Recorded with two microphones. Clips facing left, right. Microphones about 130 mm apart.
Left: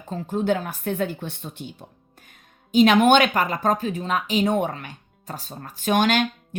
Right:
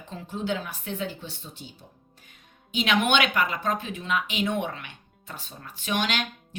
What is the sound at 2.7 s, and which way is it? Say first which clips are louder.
Speech: left 9 dB; 45° left (ahead or behind).